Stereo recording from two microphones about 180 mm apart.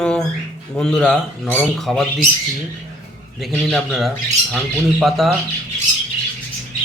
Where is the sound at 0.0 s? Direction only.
5° left (ahead or behind).